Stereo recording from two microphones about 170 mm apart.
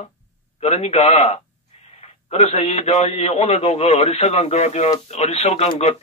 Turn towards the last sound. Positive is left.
turn(degrees=35)  # may be behind; listen again after turning